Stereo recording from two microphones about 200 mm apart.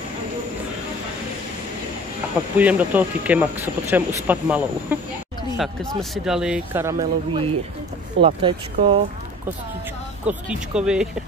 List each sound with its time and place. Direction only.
2.5 s speech: 5° right (ahead or behind); by 9.0 s 25° right (ahead or behind)
10.2 s speech: 5° right (ahead or behind)